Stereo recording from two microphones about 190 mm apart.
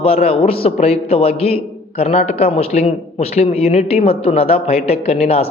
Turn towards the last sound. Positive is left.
turn(degrees=30)  # may be behind; listen again after turning